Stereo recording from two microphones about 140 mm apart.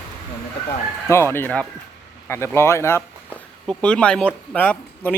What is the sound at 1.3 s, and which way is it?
Speech, 10° left (ahead or behind).